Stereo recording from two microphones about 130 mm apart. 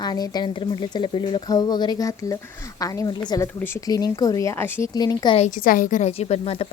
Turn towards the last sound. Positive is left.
turn(degrees=50)  # may be behind; listen again after turning